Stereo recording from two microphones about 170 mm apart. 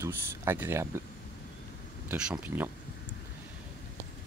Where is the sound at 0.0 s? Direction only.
15° right (ahead or behind).